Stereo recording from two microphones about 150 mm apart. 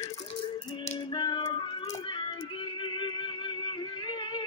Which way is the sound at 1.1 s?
30° left (ahead or behind).